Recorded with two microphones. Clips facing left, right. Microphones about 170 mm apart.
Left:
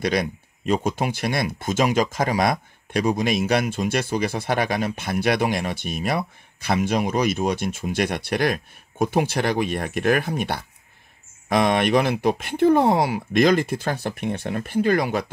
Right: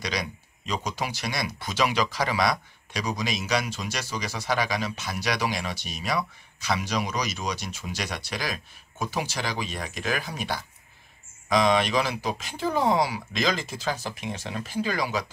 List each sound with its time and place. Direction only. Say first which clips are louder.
0.0 s speech: left 9 dB; 55° left (ahead or behind)